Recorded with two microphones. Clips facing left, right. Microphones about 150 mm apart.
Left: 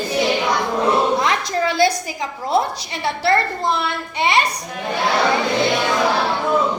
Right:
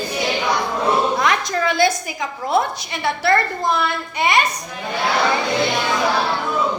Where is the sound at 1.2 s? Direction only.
25° left (ahead or behind).